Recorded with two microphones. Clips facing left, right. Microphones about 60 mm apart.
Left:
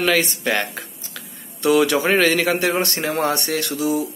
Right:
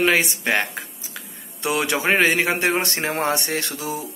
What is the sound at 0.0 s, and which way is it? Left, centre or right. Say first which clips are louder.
Speech: even; right.